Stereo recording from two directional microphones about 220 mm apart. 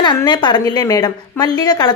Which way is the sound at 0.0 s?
20° left (ahead or behind).